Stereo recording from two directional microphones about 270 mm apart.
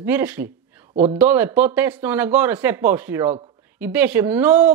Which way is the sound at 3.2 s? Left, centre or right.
Right.